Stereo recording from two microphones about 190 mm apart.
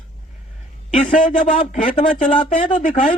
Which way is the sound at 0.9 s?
45° left (ahead or behind).